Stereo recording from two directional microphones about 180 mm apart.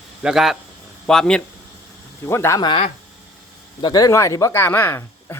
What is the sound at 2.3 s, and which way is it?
Speech, 15° left (ahead or behind).